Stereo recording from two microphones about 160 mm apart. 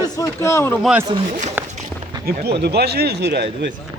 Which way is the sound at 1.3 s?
50° right (ahead or behind).